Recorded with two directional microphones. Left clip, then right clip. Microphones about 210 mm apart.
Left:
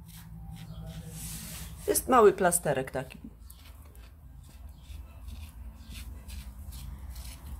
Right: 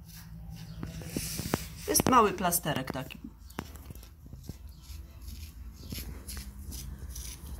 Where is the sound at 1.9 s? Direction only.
20° left (ahead or behind).